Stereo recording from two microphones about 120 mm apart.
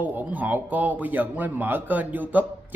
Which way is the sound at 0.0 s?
15° right (ahead or behind).